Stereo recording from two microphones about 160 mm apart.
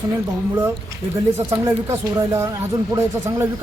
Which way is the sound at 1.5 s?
15° right (ahead or behind).